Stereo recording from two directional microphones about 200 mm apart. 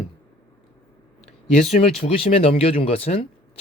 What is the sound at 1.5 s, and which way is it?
Speech, 35° left (ahead or behind).